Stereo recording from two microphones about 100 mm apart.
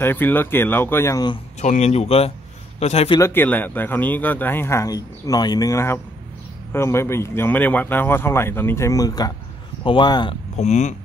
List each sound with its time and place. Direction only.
0.0 s speech: 20° left (ahead or behind)
1.9 s a man's voice: 90° left
3.2 s speech: 25° left (ahead or behind)
9.8 s speech: 50° left (ahead or behind)
10.6 s a man's voice: 90° left